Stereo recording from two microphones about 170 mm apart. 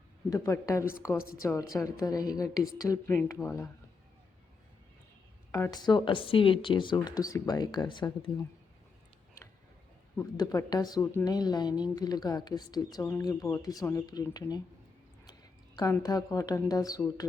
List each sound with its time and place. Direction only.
0.3 s speech: 20° left (ahead or behind)
5.5 s speech: 15° left (ahead or behind)
10.3 s speech: 25° left (ahead or behind)